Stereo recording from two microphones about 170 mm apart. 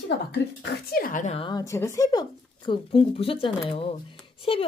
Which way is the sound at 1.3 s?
30° left (ahead or behind).